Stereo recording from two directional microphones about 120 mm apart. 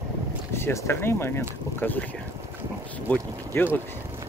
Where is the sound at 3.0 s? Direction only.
15° left (ahead or behind).